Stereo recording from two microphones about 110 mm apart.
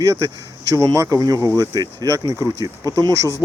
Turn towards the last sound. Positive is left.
turn(degrees=-35)  # may be behind; listen again after turning